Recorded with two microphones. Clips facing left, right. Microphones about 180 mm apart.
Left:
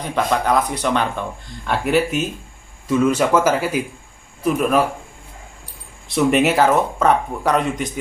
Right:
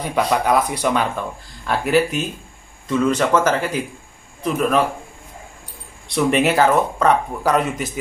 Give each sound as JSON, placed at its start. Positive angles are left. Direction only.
{"t": 0.3, "sound": "speech", "side_deg": -10}
{"t": 6.0, "sound": "speech", "side_deg": 0}